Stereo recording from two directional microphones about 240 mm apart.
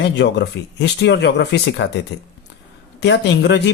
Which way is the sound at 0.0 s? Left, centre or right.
Left.